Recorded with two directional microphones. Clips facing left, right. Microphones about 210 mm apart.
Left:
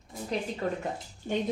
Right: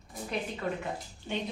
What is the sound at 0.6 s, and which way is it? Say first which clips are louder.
Speech: left 2 dB; 40° left (ahead or behind).